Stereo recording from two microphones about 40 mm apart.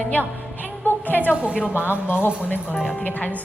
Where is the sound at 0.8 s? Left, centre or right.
Left.